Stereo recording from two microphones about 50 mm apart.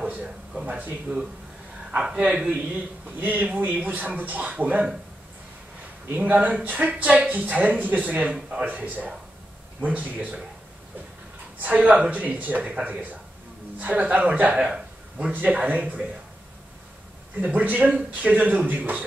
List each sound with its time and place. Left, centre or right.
0.0 s a sound: right
1.1 s speech: right
1.9 s speech: right
6.1 s speech: right
8.4 s speech: centre
8.6 s speech: right
11.6 s speech: right
12.7 s speech: centre
13.7 s speech: right
14.6 s a sound: centre
15.3 s speech: right
17.4 s speech: right